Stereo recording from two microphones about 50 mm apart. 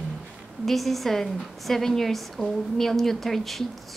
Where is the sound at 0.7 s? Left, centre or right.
Centre.